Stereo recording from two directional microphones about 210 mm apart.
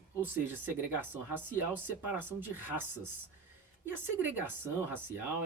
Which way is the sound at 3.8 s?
10° right (ahead or behind).